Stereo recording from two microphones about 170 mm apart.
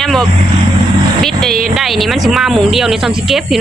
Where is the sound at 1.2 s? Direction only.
Centre (ahead or behind).